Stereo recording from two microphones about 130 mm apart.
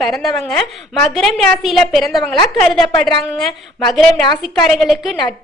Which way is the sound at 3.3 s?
5° left (ahead or behind).